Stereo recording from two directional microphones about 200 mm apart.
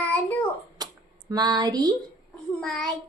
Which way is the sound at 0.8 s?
20° right (ahead or behind).